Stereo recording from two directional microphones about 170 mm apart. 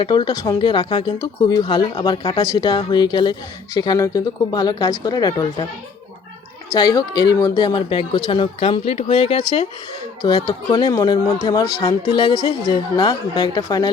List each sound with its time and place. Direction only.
0.0 s speech: 30° left (ahead or behind)
6.7 s speech: 25° left (ahead or behind)